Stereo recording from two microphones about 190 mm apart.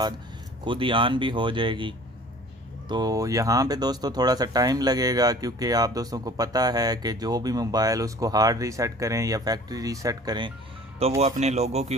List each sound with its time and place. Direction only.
0.6 s speech: 25° right (ahead or behind)
11.2 s speech: 35° right (ahead or behind)